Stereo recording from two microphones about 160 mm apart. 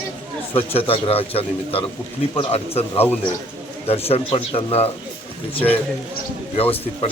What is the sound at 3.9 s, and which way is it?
Speech, 40° left (ahead or behind).